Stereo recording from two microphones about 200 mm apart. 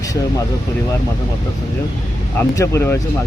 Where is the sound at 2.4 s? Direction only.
15° left (ahead or behind).